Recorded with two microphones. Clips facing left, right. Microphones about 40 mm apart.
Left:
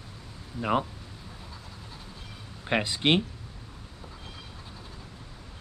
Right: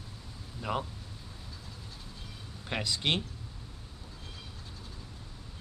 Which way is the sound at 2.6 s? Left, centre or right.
Left.